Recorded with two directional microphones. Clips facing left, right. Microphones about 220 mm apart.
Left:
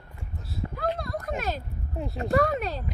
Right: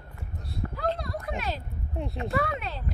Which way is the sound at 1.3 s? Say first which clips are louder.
Left 2 dB; 45° left (ahead or behind).